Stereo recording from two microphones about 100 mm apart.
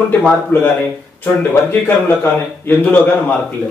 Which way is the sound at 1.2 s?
20° left (ahead or behind).